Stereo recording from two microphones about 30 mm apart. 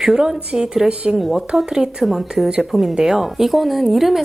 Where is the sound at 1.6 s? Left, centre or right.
Right.